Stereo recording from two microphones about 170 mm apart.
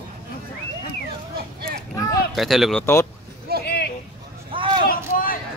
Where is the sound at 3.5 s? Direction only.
70° right (ahead or behind).